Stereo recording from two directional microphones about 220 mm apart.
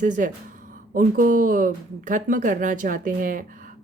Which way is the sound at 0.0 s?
35° right (ahead or behind).